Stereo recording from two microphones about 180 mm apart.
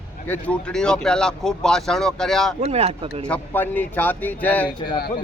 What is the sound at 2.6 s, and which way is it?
Speech, 35° right (ahead or behind).